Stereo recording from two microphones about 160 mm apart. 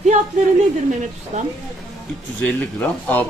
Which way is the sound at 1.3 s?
50° right (ahead or behind).